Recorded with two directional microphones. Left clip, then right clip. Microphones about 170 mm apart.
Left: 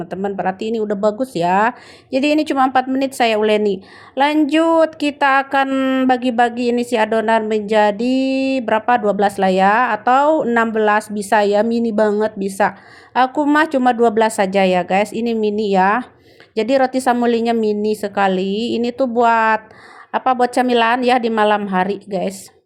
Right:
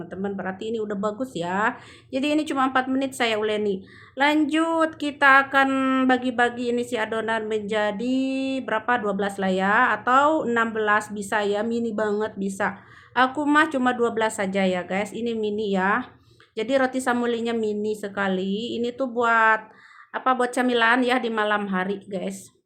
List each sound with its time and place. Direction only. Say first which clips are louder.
0.0 s a woman's voice: left 10 dB; 35° left (ahead or behind)
5.6 s speech: left 5 dB; 25° left (ahead or behind)
6.1 s a woman's voice: left 6 dB; 35° left (ahead or behind)